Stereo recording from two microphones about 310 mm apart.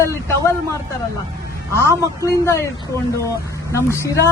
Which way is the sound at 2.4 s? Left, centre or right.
Centre.